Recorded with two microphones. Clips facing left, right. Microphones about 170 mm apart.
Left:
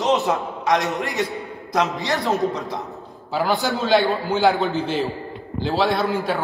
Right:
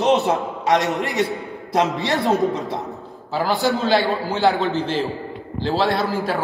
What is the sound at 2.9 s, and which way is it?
A man's voice, centre (ahead or behind).